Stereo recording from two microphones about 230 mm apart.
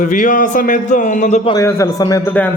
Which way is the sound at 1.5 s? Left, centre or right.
Centre.